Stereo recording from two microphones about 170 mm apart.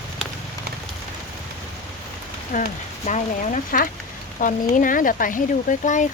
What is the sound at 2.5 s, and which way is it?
Rain on surface, 55° left (ahead or behind).